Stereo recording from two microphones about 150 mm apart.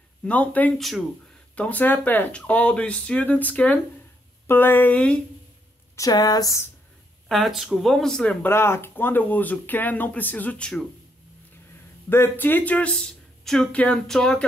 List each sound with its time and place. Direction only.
0.2 s speech: 10° left (ahead or behind)
5.9 s speech: 25° left (ahead or behind)
7.2 s speech: centre (ahead or behind)
12.1 s speech: 15° left (ahead or behind)